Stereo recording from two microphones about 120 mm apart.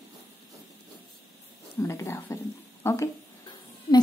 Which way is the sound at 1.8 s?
25° left (ahead or behind).